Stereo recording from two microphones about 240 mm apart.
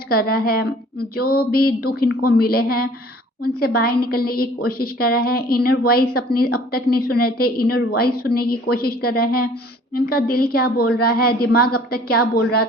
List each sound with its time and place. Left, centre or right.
0.1 s a woman's voice: left